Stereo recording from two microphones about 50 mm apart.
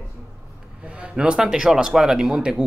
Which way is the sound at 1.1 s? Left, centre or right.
Centre.